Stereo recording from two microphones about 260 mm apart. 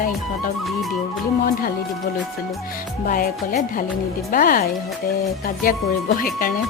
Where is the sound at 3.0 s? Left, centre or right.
Left.